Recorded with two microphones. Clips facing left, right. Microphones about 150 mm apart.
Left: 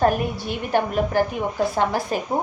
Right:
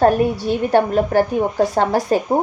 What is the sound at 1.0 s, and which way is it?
A woman's voice, 55° right (ahead or behind).